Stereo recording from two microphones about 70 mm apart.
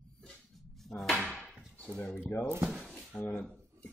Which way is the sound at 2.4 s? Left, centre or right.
Right.